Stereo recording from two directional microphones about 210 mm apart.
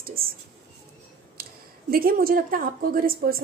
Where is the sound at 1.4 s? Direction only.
45° right (ahead or behind).